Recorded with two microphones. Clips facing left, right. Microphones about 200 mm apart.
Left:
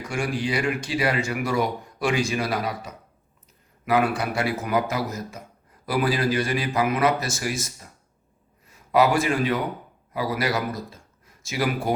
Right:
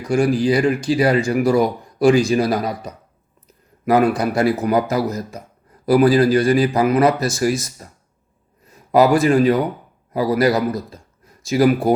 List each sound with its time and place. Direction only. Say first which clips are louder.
0.1 s a man's voice: right 10 dB; 35° right (ahead or behind)
8.9 s speech: right 7 dB; 35° right (ahead or behind)